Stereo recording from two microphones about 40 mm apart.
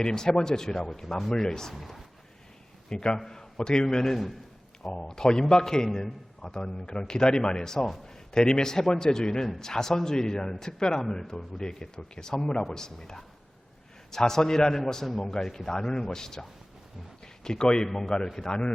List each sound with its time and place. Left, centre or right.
0.0 s a man's voice: centre
1.7 s speech: centre
2.9 s a man's voice: left; by 4.4 s centre
4.9 s a man's voice: centre
11.0 s a man's voice: centre
11.5 s a man's voice: centre
17.8 s a man's voice: centre